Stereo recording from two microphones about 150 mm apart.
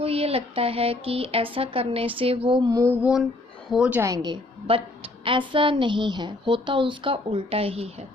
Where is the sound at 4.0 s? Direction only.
20° right (ahead or behind); by 8.1 s 45° right (ahead or behind).